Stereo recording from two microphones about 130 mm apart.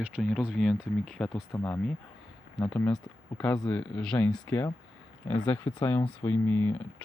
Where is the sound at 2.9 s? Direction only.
5° left (ahead or behind).